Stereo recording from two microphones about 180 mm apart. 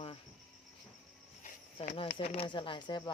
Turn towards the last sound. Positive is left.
turn(degrees=25)  # may be behind; listen again after turning